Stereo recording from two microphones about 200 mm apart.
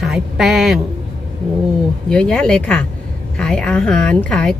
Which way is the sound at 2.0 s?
5° left (ahead or behind).